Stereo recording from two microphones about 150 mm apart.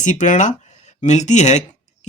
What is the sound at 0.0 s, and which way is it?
Speech, 55° left (ahead or behind).